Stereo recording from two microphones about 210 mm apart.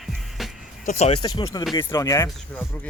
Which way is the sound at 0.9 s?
30° left (ahead or behind).